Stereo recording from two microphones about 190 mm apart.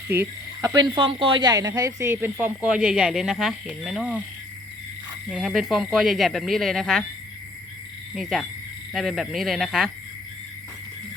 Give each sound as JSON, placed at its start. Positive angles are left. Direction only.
{"t": 0.1, "sound": "speech", "side_deg": -15}
{"t": 5.3, "sound": "speech", "side_deg": 0}
{"t": 8.1, "sound": "speech", "side_deg": 0}